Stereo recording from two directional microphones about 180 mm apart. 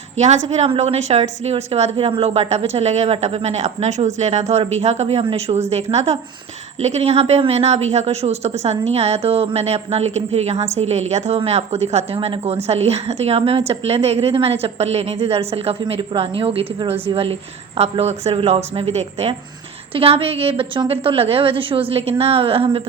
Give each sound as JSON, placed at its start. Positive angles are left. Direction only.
{"t": 0.2, "sound": "a woman's voice", "side_deg": -40}